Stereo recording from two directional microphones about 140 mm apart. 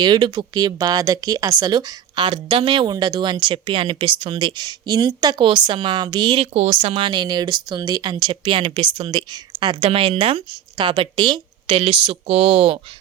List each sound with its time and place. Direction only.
0.0 s speech: 30° right (ahead or behind)